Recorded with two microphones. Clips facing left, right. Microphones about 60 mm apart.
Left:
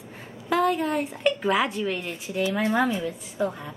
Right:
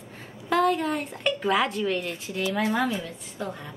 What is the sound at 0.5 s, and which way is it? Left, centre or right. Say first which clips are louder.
A woman's voice: even; centre.